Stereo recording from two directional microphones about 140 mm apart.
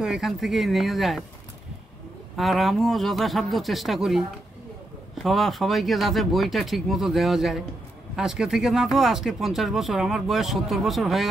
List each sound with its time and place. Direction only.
0.0 s speech: 5° right (ahead or behind)
2.3 s speech: centre (ahead or behind)
5.2 s speech: centre (ahead or behind)